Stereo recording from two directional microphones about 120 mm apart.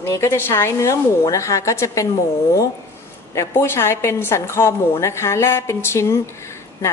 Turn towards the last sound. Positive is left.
turn(degrees=25)  # may be behind; listen again after turning